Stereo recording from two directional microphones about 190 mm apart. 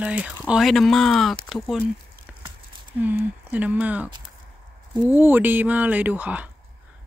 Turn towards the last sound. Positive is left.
turn(degrees=-10)  # may be behind; listen again after turning